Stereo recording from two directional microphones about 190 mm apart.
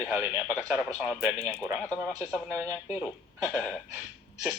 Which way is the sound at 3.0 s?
Centre (ahead or behind).